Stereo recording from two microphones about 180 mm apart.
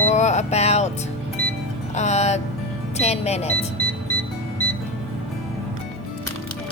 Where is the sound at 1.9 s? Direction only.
40° left (ahead or behind).